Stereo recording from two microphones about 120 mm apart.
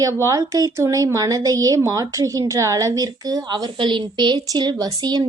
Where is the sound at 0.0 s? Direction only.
25° right (ahead or behind).